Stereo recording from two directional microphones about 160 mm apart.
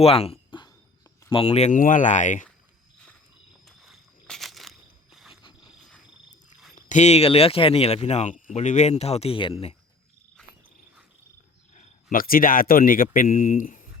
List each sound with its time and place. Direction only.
0.0 s a sound: 40° left (ahead or behind)
1.3 s speech: 35° left (ahead or behind)
1.8 s speech: 55° left (ahead or behind)
3.7 s a sound: centre (ahead or behind)
5.3 s cricket: 30° left (ahead or behind)
6.7 s speech: 50° left (ahead or behind)
12.1 s speech: 65° left (ahead or behind)